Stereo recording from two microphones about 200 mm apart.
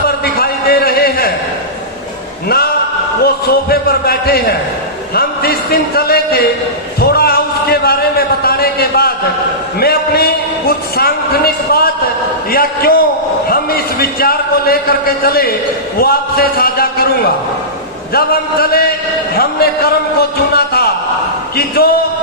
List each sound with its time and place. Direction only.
0.3 s a sound: 50° left (ahead or behind)
3.2 s a man's voice: 50° left (ahead or behind)
18.1 s a man's voice: 50° left (ahead or behind)